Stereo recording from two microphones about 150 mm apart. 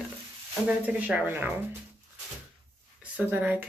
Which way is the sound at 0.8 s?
10° right (ahead or behind).